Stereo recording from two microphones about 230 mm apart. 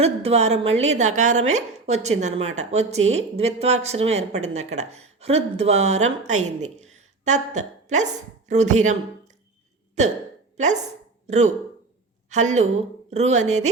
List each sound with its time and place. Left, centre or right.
0.0 s speech: right
10.6 s a woman's voice: right